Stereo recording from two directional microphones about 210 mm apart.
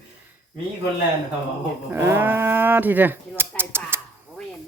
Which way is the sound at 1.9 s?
10° right (ahead or behind).